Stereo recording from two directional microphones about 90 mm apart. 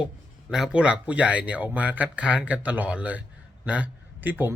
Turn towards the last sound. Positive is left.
turn(degrees=-20)  # may be behind; listen again after turning